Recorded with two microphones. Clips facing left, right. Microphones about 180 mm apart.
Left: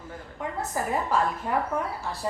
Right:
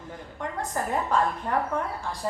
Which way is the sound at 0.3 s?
5° left (ahead or behind).